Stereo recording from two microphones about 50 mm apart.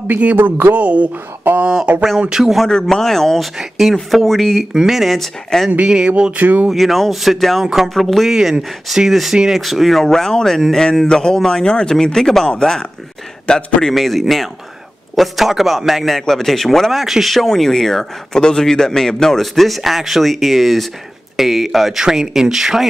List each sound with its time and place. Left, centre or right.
0.4 s speech: right
0.7 s a sound: right
1.5 s speech: right
2.1 s speech: centre
2.4 s a man's voice: centre
5.9 s a sound: centre
6.3 s speech: right
6.7 s a man's voice: centre
7.6 s speech: centre
7.9 s a man's voice: centre
8.3 s a man's voice: centre
13.5 s a man's voice: left
13.8 s a man's voice: centre